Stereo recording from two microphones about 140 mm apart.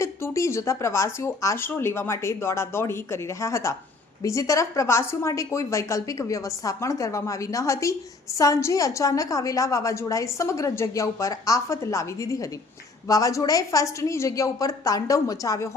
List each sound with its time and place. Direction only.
0.0 s a woman's voice: 20° left (ahead or behind)